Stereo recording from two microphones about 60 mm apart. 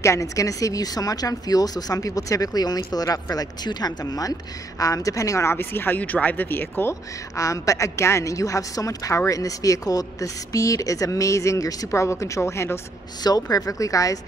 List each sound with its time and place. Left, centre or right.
0.0 s speech: left
5.5 s speech: left
5.9 s speech: left
7.3 s a woman's voice: left
13.3 s a woman's voice: left